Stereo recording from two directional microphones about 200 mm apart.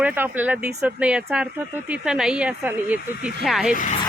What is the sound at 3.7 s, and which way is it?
Speech, 40° left (ahead or behind).